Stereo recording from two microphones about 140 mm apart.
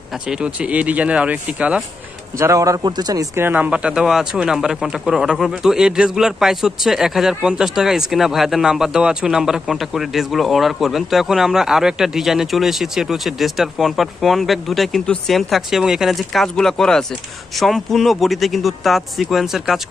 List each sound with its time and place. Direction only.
0.3 s speech: 10° right (ahead or behind)
2.3 s speech: 20° right (ahead or behind)
3.3 s speech: 15° right (ahead or behind)